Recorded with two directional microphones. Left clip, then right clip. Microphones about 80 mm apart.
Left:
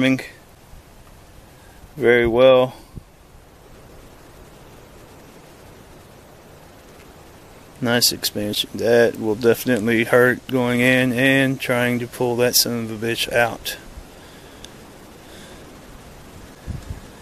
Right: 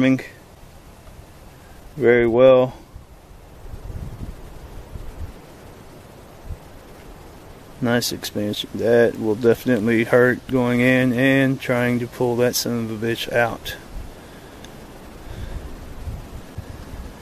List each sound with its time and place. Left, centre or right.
0.0 s speech: left
2.0 s speech: left
7.8 s speech: left